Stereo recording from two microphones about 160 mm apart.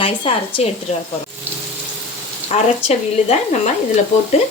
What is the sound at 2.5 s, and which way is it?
A woman's voice, 40° left (ahead or behind).